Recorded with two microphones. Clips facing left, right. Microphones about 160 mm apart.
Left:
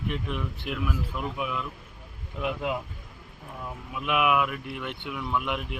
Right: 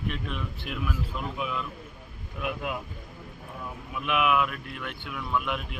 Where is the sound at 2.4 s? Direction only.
25° left (ahead or behind).